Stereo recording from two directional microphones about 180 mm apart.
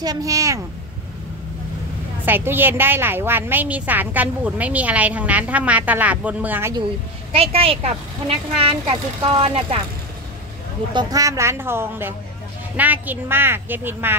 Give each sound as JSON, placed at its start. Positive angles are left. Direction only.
{"t": 0.0, "sound": "a woman's voice", "side_deg": -20}
{"t": 2.2, "sound": "a woman's voice", "side_deg": -10}
{"t": 7.3, "sound": "a child's voice", "side_deg": -30}
{"t": 10.9, "sound": "a woman's voice", "side_deg": -25}